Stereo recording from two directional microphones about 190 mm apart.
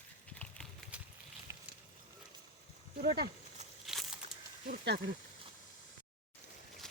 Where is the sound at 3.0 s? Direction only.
45° right (ahead or behind).